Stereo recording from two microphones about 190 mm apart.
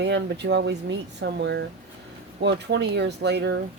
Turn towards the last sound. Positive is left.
turn(degrees=-65)  # may be behind; listen again after turning